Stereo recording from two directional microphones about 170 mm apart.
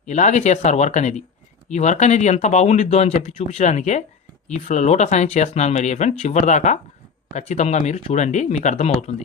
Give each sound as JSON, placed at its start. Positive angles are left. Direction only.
{"t": 0.0, "sound": "speech", "side_deg": 45}